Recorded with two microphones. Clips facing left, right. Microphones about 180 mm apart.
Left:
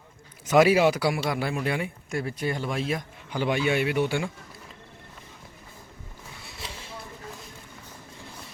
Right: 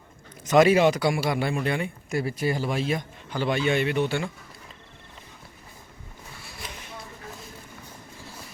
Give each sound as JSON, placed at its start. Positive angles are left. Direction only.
{"t": 0.4, "sound": "a man's voice", "side_deg": 5}
{"t": 2.1, "sound": "a man's voice", "side_deg": -5}
{"t": 3.2, "sound": "a man's voice", "side_deg": 15}
{"t": 6.4, "sound": "a sound", "side_deg": 25}